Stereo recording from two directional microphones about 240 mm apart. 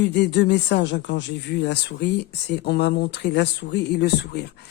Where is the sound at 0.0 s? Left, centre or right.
Left.